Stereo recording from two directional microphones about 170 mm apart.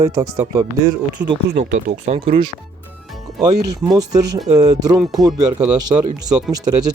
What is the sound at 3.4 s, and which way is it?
Speech, 20° right (ahead or behind).